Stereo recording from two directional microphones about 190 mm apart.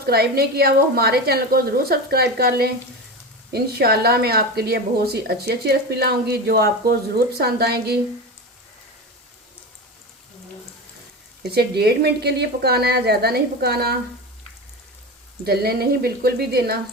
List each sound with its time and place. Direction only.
0.0 s speech: 55° right (ahead or behind)
11.5 s speech: 60° right (ahead or behind)
15.4 s speech: 55° right (ahead or behind)